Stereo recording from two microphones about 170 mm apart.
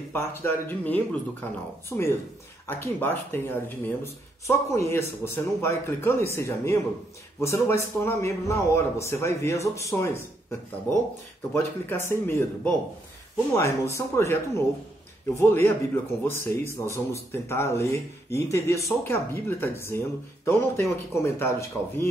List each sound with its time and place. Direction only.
0.1 s speech: 15° left (ahead or behind)